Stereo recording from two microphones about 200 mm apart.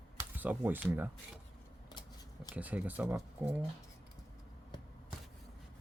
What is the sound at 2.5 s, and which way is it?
Speech, 5° right (ahead or behind).